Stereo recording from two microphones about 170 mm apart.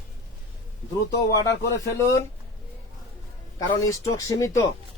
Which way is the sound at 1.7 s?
20° left (ahead or behind).